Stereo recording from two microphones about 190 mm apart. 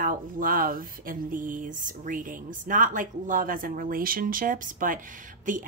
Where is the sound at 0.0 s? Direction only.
45° right (ahead or behind).